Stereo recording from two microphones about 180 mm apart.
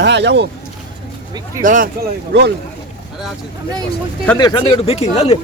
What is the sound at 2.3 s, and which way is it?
Speech, 65° right (ahead or behind).